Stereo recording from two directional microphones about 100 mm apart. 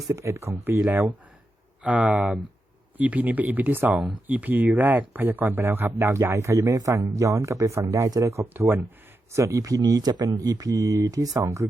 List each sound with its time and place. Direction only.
0.1 s speech: 25° right (ahead or behind)
9.3 s speech: 30° right (ahead or behind)